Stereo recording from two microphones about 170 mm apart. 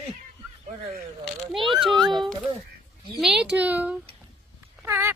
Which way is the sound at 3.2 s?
5° right (ahead or behind).